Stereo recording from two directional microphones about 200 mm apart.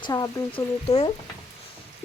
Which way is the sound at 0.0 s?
15° left (ahead or behind).